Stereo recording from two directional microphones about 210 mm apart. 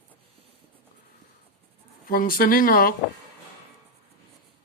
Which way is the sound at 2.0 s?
40° left (ahead or behind).